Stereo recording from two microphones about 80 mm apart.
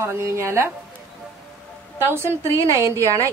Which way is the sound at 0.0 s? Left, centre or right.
Right.